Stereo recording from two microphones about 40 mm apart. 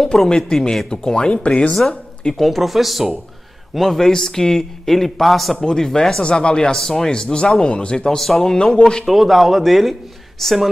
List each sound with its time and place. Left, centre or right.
0.0 s a man's voice: centre
1.3 s speech: left
2.3 s a man's voice: centre
5.7 s a man's voice: centre
8.2 s a man's voice: centre
9.0 s speech: centre